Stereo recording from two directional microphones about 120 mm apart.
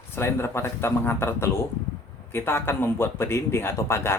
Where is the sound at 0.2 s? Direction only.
20° left (ahead or behind).